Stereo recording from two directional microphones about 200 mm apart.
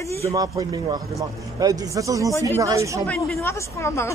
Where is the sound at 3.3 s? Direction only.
15° left (ahead or behind).